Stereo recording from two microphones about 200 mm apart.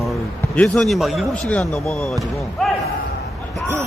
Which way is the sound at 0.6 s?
Centre (ahead or behind).